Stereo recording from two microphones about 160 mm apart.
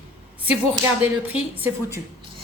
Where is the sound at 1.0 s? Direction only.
10° right (ahead or behind).